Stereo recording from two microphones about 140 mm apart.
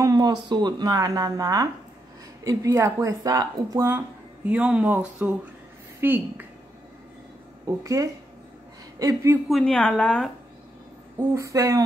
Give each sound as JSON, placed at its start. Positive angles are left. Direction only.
{"t": 0.0, "sound": "a woman's voice", "side_deg": -30}
{"t": 4.5, "sound": "speech", "side_deg": -10}
{"t": 7.8, "sound": "a woman's voice", "side_deg": -20}
{"t": 9.5, "sound": "speech", "side_deg": 5}
{"t": 11.1, "sound": "a woman's voice", "side_deg": -20}